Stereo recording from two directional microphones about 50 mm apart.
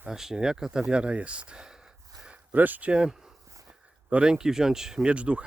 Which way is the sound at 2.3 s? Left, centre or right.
Right.